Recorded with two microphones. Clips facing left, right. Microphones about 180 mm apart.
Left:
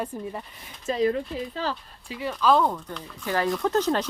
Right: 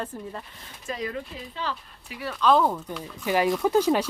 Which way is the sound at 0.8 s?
30° left (ahead or behind).